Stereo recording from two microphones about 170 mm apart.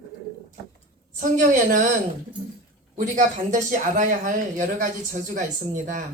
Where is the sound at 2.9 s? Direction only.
50° right (ahead or behind).